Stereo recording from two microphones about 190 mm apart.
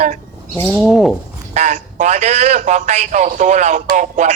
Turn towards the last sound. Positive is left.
turn(degrees=-40)  # may be behind; listen again after turning